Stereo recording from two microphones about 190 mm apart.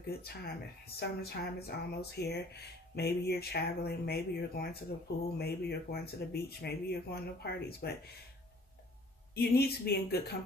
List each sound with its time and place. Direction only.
0.2 s speech: 55° left (ahead or behind)
9.3 s speech: 55° left (ahead or behind)